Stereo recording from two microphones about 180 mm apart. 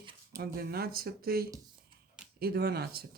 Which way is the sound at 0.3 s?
60° right (ahead or behind).